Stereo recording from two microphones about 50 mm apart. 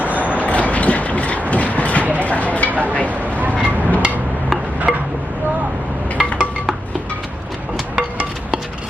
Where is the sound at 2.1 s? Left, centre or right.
Left.